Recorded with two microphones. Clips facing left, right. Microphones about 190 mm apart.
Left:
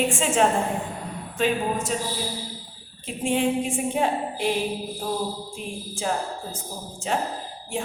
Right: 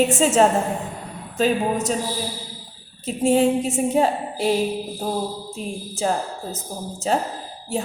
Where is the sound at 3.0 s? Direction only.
40° right (ahead or behind).